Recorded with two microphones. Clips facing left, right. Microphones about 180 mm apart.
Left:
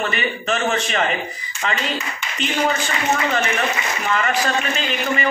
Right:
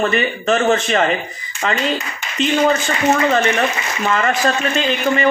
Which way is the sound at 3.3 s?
35° right (ahead or behind).